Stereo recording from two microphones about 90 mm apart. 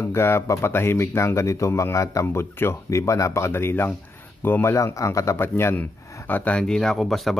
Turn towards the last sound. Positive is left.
turn(degrees=5)  # may be behind; listen again after turning